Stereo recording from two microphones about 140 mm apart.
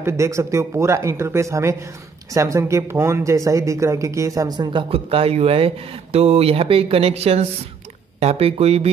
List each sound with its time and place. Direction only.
0.0 s speech: 20° right (ahead or behind); by 8.9 s 45° right (ahead or behind)